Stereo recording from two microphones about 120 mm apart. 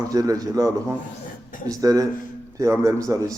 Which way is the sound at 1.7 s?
30° right (ahead or behind).